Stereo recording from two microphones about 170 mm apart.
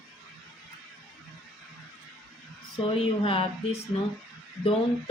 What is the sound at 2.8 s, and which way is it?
Speech, 35° left (ahead or behind).